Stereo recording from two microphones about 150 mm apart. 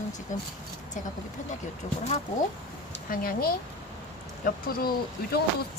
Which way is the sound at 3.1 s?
75° left (ahead or behind).